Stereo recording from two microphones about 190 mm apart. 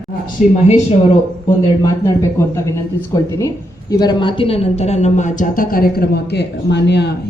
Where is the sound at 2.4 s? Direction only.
15° left (ahead or behind).